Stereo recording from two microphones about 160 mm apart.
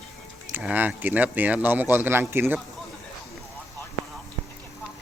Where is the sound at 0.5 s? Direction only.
10° right (ahead or behind).